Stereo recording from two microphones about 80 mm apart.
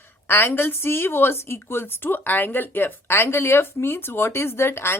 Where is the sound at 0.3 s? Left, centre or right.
Left.